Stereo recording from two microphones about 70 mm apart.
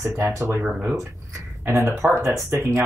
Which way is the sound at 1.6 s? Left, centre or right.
Right.